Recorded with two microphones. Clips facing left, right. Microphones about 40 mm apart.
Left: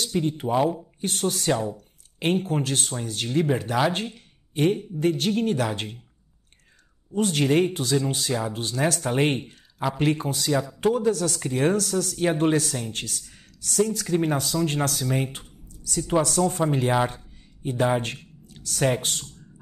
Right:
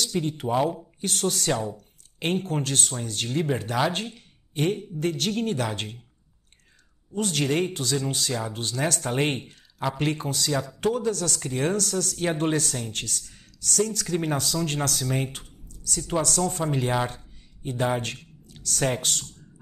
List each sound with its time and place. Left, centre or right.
0.4 s speech: centre
7.2 s speech: centre
12.2 s speech: centre
12.9 s speech: centre
14.0 s speech: centre
14.3 s speech: centre
16.2 s speech: left
17.9 s speech: left